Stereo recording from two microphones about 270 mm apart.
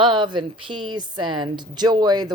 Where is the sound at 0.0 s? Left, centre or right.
Centre.